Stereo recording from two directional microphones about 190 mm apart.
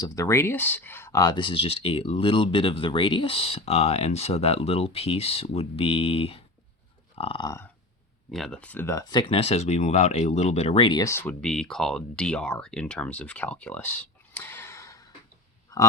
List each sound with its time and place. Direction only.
0.0 s speech: 20° left (ahead or behind)
8.3 s speech: centre (ahead or behind); by 15.1 s 15° left (ahead or behind)